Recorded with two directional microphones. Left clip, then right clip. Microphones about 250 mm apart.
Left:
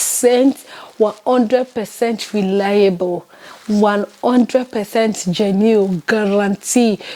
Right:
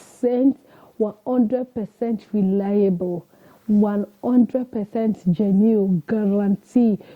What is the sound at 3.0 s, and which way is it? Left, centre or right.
Speech, left.